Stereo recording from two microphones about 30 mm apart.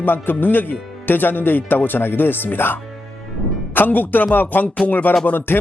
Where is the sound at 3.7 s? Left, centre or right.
Left.